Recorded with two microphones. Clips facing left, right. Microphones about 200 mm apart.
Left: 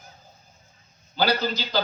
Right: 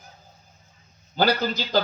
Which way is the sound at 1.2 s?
50° right (ahead or behind).